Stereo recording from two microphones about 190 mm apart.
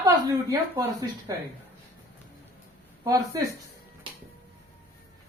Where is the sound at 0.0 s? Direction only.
15° right (ahead or behind).